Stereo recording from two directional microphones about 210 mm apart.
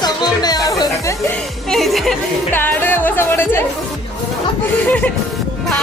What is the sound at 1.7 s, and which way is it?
A woman's voice, centre (ahead or behind).